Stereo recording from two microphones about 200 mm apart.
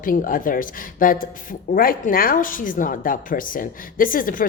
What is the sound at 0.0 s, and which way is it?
Speech, 45° left (ahead or behind).